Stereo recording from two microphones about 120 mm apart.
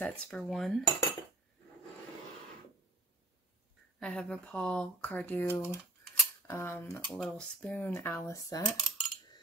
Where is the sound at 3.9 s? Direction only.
5° left (ahead or behind).